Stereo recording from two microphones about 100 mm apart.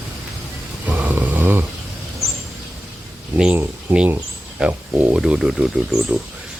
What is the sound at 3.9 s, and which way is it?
Speech, 20° right (ahead or behind).